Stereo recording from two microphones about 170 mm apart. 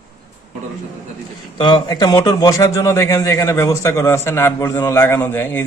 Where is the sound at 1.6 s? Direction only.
25° left (ahead or behind).